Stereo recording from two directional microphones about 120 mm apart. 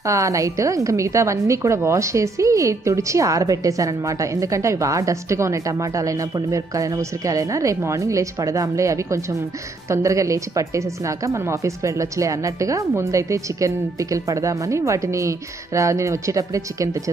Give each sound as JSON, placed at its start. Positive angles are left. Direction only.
{"t": 0.0, "sound": "a woman's voice", "side_deg": -25}